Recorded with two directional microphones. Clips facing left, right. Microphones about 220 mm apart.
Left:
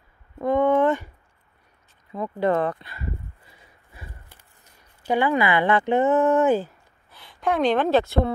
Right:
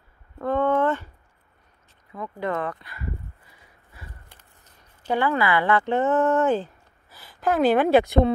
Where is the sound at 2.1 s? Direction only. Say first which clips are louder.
Left 6 dB; 30° left (ahead or behind).